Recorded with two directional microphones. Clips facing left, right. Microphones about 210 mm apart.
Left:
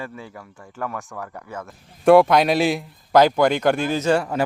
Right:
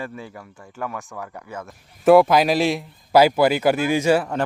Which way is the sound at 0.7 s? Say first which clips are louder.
Left 1 dB; 10° right (ahead or behind).